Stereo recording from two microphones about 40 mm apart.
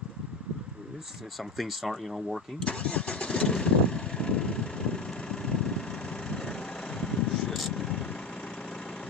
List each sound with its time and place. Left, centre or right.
1.6 s speech: centre
2.6 s vehicle: left
7.0 s a sound: centre
7.7 s vehicle: centre